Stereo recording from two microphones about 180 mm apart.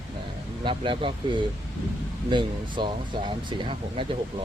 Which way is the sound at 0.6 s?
30° right (ahead or behind).